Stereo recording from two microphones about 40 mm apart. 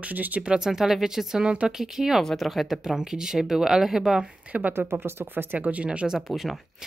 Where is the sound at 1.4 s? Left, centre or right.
Right.